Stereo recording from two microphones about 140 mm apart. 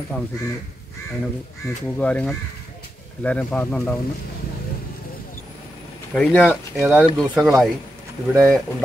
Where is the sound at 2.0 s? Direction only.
10° left (ahead or behind).